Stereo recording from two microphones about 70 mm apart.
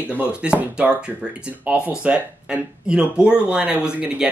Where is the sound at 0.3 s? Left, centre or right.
Centre.